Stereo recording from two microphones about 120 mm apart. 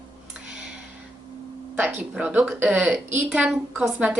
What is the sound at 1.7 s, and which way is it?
A woman's voice, 15° right (ahead or behind).